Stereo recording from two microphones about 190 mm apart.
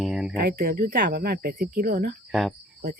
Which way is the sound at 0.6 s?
55° right (ahead or behind).